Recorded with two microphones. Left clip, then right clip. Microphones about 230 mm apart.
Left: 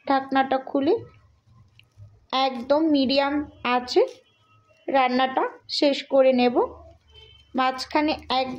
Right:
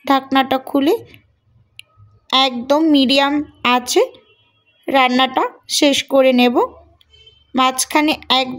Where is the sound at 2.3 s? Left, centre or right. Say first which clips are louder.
Right 7 dB; right.